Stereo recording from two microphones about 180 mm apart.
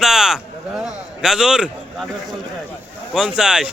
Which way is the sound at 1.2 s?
5° right (ahead or behind).